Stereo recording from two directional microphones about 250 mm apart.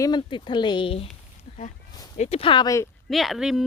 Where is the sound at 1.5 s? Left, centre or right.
Left.